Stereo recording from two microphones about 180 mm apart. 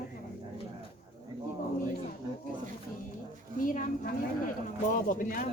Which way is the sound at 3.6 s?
50° left (ahead or behind).